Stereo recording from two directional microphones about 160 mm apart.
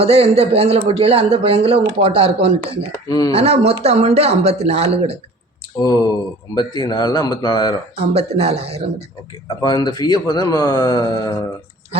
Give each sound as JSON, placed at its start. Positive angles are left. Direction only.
{"t": 0.0, "sound": "speech", "side_deg": -35}
{"t": 3.1, "sound": "speech", "side_deg": 25}
{"t": 3.3, "sound": "speech", "side_deg": -40}
{"t": 5.8, "sound": "speech", "side_deg": 25}
{"t": 7.9, "sound": "speech", "side_deg": -40}
{"t": 9.6, "sound": "speech", "side_deg": 25}